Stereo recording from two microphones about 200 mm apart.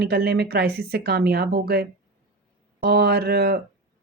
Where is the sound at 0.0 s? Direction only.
55° right (ahead or behind).